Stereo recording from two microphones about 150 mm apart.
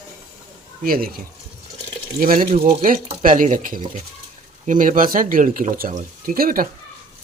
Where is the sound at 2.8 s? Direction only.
65° right (ahead or behind).